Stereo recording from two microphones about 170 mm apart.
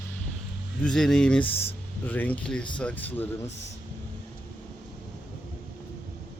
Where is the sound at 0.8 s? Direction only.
5° left (ahead or behind).